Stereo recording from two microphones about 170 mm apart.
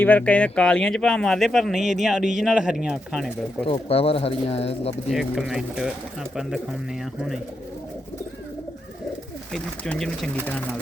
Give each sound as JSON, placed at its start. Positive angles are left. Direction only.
{"t": 0.0, "sound": "speech", "side_deg": 10}
{"t": 3.7, "sound": "speech", "side_deg": 35}
{"t": 5.0, "sound": "speech", "side_deg": 0}
{"t": 7.0, "sound": "speech", "side_deg": 0}
{"t": 9.5, "sound": "speech", "side_deg": 0}